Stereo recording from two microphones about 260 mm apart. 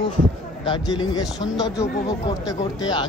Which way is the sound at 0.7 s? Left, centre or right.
Centre.